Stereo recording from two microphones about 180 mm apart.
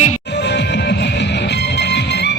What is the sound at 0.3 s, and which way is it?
Music, 70° left (ahead or behind).